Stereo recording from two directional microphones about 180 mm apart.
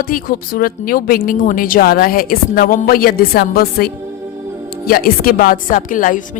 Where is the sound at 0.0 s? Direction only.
50° left (ahead or behind).